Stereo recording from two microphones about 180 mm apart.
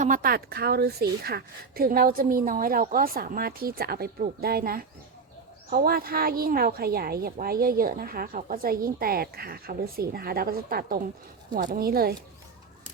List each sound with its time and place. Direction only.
0.0 s a woman's voice: 50° right (ahead or behind)